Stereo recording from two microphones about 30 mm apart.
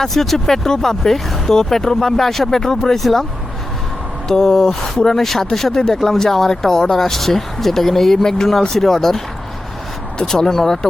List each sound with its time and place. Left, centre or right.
0.0 s speech: centre
4.3 s speech: centre
10.2 s speech: centre